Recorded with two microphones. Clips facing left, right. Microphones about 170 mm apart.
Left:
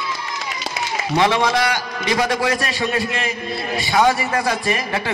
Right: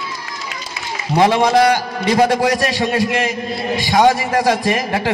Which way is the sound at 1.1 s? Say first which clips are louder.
Right 5 dB; 45° right (ahead or behind).